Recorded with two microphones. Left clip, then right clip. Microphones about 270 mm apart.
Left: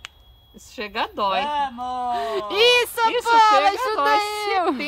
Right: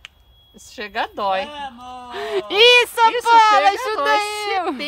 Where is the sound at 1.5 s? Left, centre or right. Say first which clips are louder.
Left 7 dB; centre.